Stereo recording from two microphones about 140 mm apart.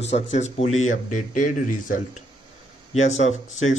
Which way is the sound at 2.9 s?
55° left (ahead or behind).